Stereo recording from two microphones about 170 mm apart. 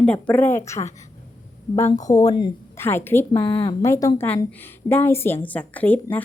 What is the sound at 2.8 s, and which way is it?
A woman's voice, 15° left (ahead or behind).